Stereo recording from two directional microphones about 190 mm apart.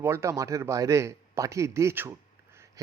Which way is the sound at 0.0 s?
15° right (ahead or behind).